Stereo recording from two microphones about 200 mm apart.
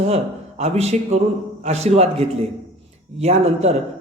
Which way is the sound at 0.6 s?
35° right (ahead or behind).